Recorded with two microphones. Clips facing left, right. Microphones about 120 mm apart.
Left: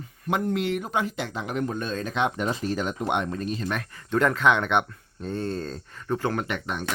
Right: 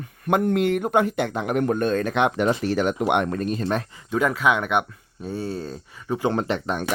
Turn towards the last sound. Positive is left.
turn(degrees=-35)  # may be behind; listen again after turning